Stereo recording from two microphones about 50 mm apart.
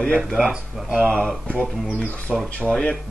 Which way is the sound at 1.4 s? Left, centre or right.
Left.